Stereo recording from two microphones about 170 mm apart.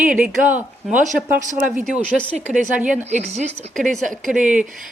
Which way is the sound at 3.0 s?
45° right (ahead or behind).